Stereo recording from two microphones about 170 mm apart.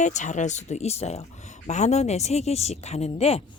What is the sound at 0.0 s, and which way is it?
Speech, 45° left (ahead or behind).